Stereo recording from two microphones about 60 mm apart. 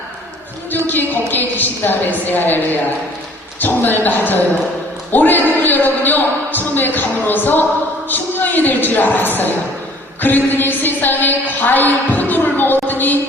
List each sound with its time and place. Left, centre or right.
0.9 s a man's voice: left
3.6 s a man's voice: left